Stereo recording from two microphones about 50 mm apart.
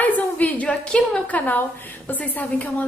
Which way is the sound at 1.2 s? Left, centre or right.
Left.